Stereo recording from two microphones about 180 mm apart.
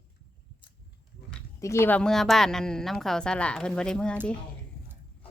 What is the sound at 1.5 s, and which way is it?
A woman's voice, 15° left (ahead or behind).